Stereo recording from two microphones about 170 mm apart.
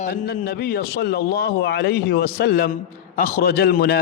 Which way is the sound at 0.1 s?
70° left (ahead or behind).